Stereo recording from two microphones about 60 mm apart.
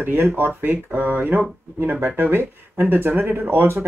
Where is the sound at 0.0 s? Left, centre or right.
Right.